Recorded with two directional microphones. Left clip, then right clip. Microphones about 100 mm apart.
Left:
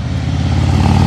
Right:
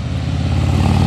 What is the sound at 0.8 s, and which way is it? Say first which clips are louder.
Vehicle: left 3 dB; 20° right (ahead or behind).